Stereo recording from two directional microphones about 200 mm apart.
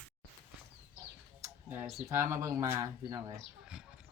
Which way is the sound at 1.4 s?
10° right (ahead or behind).